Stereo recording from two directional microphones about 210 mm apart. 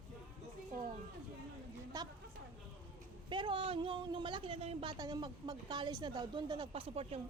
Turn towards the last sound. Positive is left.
turn(degrees=-30)  # may be behind; listen again after turning